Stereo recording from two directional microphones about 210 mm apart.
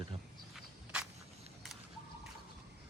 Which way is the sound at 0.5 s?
5° right (ahead or behind).